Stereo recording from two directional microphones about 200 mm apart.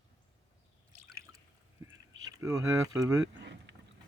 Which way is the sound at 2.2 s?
15° right (ahead or behind).